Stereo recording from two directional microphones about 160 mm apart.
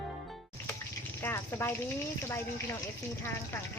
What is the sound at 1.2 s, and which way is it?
Speech, 15° left (ahead or behind).